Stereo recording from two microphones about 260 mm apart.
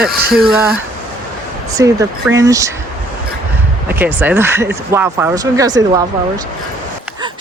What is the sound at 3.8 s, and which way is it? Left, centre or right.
Speech, centre.